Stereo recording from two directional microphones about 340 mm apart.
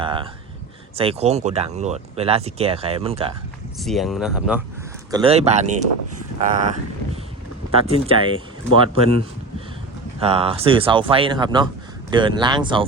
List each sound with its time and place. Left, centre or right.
0.0 s a sound: centre
0.9 s speech: centre
3.8 s speech: centre
5.1 s speech: centre
10.2 s speech: centre